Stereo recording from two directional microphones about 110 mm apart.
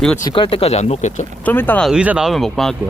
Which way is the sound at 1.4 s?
15° left (ahead or behind).